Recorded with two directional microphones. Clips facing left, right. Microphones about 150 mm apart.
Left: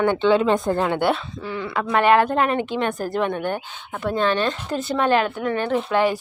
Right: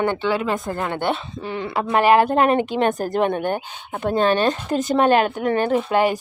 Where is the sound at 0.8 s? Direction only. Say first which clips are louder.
Left 3 dB; 10° left (ahead or behind).